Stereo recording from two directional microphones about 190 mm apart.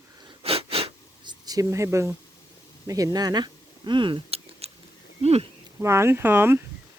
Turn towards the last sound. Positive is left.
turn(degrees=-10)  # may be behind; listen again after turning